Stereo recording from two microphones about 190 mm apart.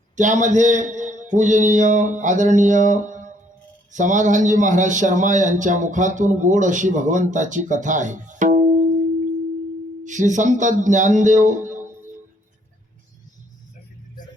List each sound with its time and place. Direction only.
0.2 s a man's voice: 40° right (ahead or behind)
10.0 s a man's voice: 40° right (ahead or behind)